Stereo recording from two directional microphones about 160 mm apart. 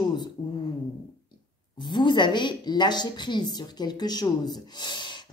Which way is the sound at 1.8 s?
30° left (ahead or behind).